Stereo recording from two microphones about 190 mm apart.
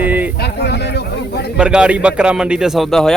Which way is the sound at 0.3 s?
60° left (ahead or behind).